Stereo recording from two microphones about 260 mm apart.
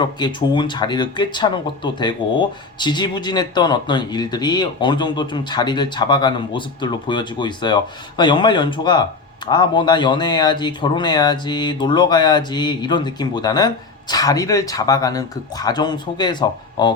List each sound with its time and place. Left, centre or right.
0.0 s speech: centre